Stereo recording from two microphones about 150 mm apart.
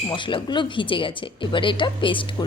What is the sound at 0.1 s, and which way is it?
Speech, 35° left (ahead or behind).